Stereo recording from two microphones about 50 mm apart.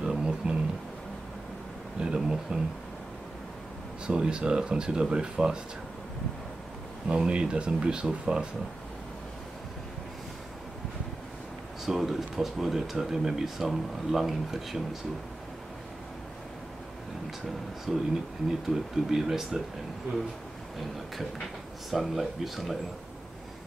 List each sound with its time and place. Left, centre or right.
0.0 s a sound: centre
2.0 s a sound: centre
4.1 s speech: centre
7.1 s speech: right
11.8 s speech: centre
17.9 s speech: centre
21.9 s speech: centre